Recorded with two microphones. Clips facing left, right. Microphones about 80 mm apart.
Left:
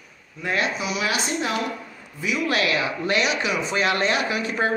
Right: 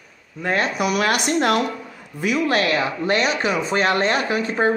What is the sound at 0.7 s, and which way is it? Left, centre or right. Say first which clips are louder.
Speech: right 5 dB; right.